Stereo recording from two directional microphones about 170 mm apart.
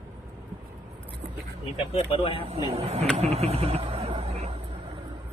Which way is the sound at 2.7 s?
35° right (ahead or behind).